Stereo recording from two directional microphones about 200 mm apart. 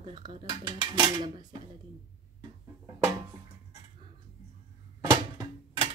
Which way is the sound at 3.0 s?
20° right (ahead or behind).